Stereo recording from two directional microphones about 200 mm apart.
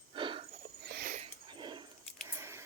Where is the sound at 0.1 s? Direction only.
25° right (ahead or behind).